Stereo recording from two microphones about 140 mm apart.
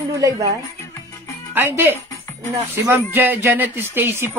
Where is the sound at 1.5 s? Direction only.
15° right (ahead or behind).